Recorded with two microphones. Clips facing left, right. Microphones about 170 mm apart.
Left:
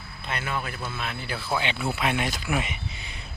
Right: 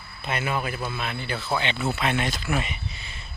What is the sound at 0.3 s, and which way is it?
Speech, 15° right (ahead or behind).